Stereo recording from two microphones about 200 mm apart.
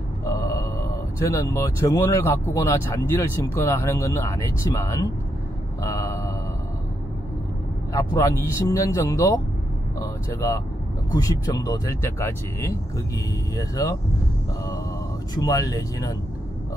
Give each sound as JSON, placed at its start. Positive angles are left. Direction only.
{"t": 0.2, "sound": "speech", "side_deg": 15}
{"t": 5.8, "sound": "mantra", "side_deg": 15}
{"t": 7.9, "sound": "speech", "side_deg": 15}
{"t": 15.3, "sound": "speech", "side_deg": 15}